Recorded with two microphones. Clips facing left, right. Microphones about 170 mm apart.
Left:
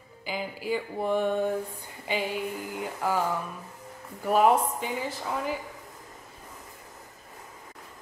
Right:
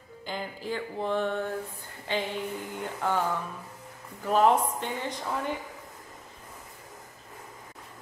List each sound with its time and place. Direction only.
0.2 s speech: 5° left (ahead or behind)